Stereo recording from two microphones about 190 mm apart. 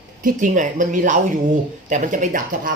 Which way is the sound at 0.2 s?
45° right (ahead or behind).